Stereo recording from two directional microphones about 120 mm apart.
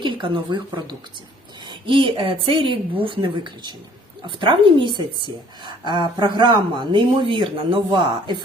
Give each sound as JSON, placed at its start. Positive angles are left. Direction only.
{"t": 0.0, "sound": "a woman's voice", "side_deg": -45}